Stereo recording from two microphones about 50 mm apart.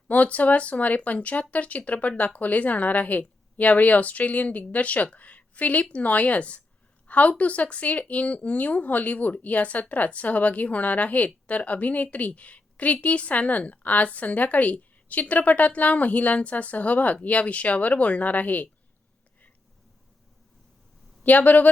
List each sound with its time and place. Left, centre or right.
0.1 s a woman's voice: left
5.1 s a sound: left
5.8 s a woman's voice: left
21.2 s a woman's voice: left